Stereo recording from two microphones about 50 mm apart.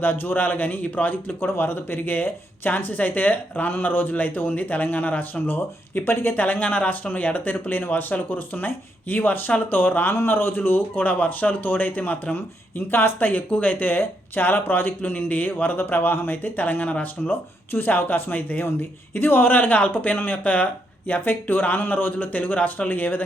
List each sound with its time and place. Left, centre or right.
0.0 s a man's voice: left
5.5 s a man's voice: left
12.9 s a man's voice: left
17.7 s a man's voice: left